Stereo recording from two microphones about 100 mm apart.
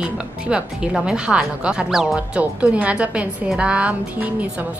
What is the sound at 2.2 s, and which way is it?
Speech, 15° right (ahead or behind).